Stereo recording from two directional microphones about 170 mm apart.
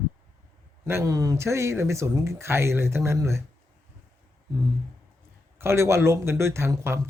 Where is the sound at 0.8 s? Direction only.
20° right (ahead or behind).